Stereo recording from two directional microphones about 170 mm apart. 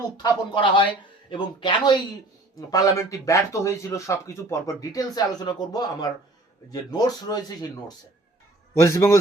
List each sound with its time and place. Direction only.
0.2 s a man's voice: 30° left (ahead or behind)